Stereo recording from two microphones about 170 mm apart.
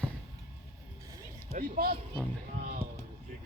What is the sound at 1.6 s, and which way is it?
Speech, 55° right (ahead or behind).